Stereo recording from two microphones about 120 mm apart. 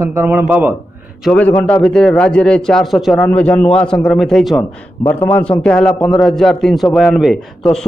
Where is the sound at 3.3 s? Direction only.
15° left (ahead or behind).